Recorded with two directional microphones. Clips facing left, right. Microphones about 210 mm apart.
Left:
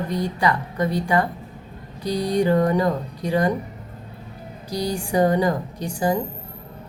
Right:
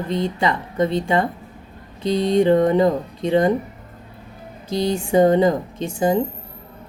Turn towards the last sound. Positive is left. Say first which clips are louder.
# right 3 dB
turn(degrees=-25)  # may be behind; listen again after turning